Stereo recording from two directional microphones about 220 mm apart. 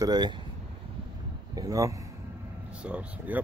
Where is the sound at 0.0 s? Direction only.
20° right (ahead or behind).